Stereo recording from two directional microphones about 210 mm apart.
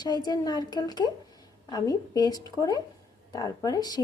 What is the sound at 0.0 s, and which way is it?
A woman's voice, 20° left (ahead or behind).